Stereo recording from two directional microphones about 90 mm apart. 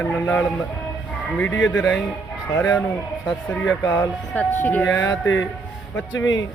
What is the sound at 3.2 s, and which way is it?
Speech, 15° left (ahead or behind).